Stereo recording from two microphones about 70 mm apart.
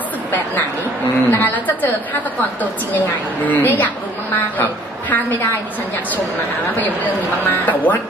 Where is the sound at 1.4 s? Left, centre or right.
Left.